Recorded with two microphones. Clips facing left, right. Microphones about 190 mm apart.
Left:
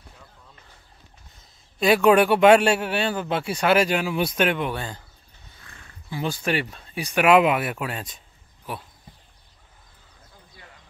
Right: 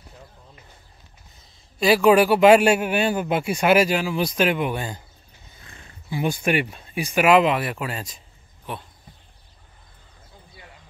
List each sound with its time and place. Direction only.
1.8 s a man's voice: centre (ahead or behind)
5.6 s roaring cats: 25° right (ahead or behind)
6.0 s a man's voice: 15° right (ahead or behind); by 8.8 s 5° left (ahead or behind)